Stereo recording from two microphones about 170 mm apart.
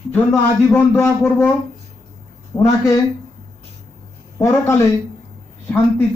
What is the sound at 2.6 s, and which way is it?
Speech, 20° left (ahead or behind).